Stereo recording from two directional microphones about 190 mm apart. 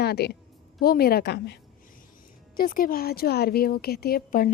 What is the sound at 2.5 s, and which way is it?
A woman's voice, 50° left (ahead or behind).